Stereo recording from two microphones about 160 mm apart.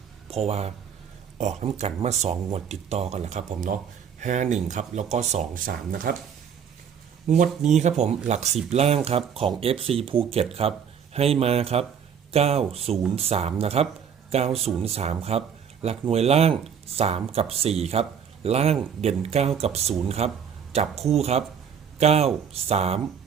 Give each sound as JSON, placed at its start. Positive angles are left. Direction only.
{"t": 0.3, "sound": "speech", "side_deg": -40}
{"t": 7.3, "sound": "speech", "side_deg": -50}